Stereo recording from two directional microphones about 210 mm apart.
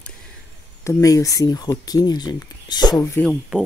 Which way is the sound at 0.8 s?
15° left (ahead or behind).